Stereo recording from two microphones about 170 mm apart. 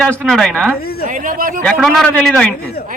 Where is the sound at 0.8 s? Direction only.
65° left (ahead or behind).